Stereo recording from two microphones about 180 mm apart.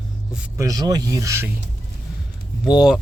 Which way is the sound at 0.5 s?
20° right (ahead or behind).